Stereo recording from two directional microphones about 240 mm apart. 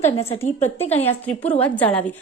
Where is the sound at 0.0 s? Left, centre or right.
Left.